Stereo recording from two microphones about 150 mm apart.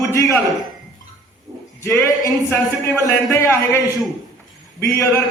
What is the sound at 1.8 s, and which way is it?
A man's voice, 20° left (ahead or behind).